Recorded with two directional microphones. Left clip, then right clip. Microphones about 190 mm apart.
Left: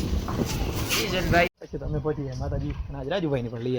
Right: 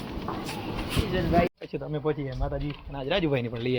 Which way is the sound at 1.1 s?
25° left (ahead or behind).